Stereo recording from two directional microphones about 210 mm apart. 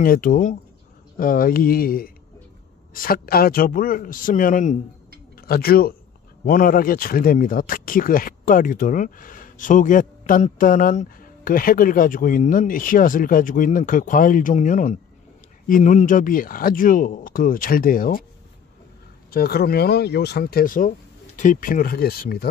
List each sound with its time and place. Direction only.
0.0 s speech: 40° left (ahead or behind)
19.3 s speech: 50° left (ahead or behind)